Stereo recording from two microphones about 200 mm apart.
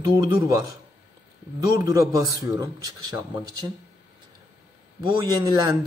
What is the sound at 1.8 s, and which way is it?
Speech, 15° right (ahead or behind).